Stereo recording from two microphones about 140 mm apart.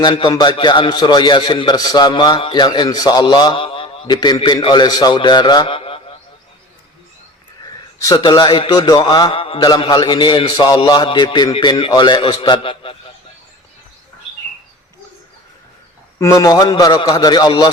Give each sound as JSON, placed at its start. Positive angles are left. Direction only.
{"t": 0.0, "sound": "a man's voice", "side_deg": 35}
{"t": 8.0, "sound": "a man's voice", "side_deg": 30}
{"t": 16.1, "sound": "a man's voice", "side_deg": 25}